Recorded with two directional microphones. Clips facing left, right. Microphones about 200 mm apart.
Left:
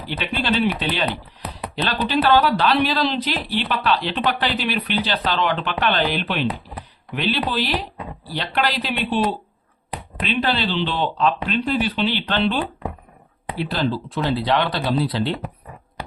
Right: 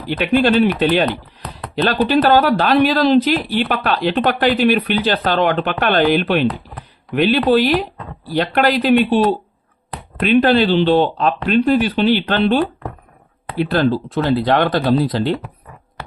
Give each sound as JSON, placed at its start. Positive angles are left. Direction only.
{"t": 0.8, "sound": "speech", "side_deg": -50}
{"t": 10.2, "sound": "speech", "side_deg": -50}